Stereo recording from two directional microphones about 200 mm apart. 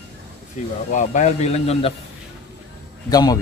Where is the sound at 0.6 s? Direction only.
35° left (ahead or behind).